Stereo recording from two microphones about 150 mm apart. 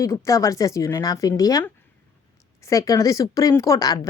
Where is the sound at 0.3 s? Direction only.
20° left (ahead or behind).